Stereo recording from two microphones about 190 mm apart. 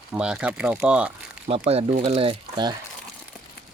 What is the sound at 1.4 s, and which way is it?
Speech, 30° right (ahead or behind).